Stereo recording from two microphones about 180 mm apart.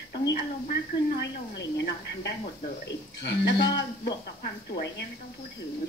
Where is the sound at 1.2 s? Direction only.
75° left (ahead or behind).